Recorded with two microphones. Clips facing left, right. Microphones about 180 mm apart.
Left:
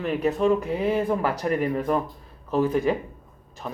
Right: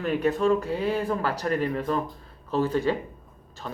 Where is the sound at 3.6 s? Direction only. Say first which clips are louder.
Left 2 dB; 10° left (ahead or behind).